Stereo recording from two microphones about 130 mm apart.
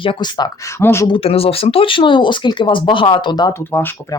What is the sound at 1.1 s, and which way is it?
Speech, 45° left (ahead or behind).